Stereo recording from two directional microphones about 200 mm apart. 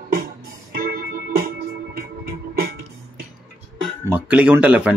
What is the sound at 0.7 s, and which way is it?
Music, 45° right (ahead or behind).